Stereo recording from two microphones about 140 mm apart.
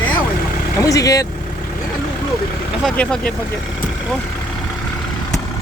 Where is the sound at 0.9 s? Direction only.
25° left (ahead or behind).